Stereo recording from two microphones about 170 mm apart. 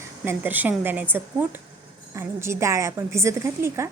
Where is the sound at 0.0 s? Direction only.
10° right (ahead or behind).